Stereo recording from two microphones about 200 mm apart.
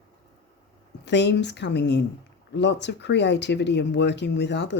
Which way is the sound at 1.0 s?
60° left (ahead or behind).